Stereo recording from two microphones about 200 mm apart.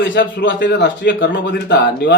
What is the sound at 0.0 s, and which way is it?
A man's voice, 60° left (ahead or behind).